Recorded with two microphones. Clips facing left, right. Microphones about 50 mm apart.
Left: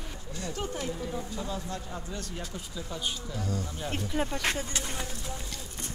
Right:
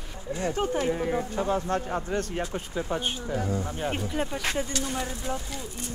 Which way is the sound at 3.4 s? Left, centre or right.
Right.